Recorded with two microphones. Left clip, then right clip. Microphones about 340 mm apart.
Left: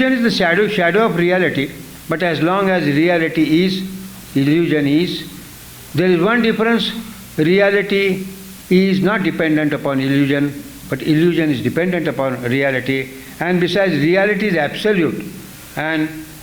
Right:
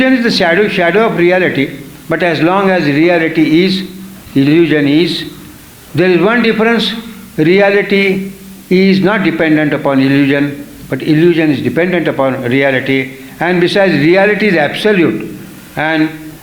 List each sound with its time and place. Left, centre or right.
0.0 s a man's voice: left